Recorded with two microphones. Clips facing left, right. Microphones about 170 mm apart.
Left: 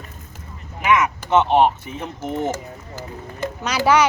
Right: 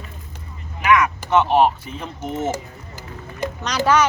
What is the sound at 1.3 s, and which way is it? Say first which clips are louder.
Speech: left 1 dB; 20° left (ahead or behind).